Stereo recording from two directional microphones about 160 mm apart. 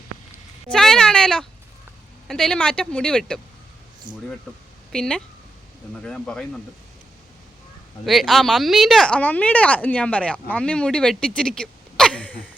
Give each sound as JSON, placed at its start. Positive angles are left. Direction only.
{"t": 0.7, "sound": "cat", "side_deg": 5}
{"t": 2.2, "sound": "speech", "side_deg": 5}
{"t": 4.1, "sound": "speech", "side_deg": -30}
{"t": 4.9, "sound": "speech", "side_deg": 5}
{"t": 8.0, "sound": "speech", "side_deg": 0}